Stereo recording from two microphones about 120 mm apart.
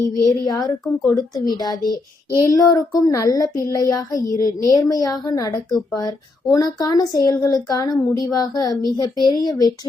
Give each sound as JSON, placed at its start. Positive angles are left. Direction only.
{"t": 0.2, "sound": "a woman's voice", "side_deg": 30}